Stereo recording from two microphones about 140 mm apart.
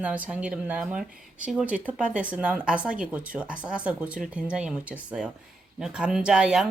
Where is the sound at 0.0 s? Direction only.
10° right (ahead or behind).